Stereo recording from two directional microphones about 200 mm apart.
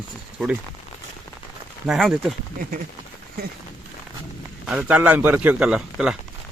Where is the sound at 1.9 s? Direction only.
Centre (ahead or behind).